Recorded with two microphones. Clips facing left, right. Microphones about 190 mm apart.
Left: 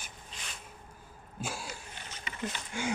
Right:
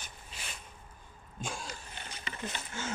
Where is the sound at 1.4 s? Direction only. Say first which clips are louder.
Left 1 dB; 5° left (ahead or behind).